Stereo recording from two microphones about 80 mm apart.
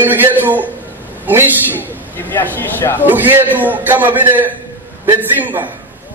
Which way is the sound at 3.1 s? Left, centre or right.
Right.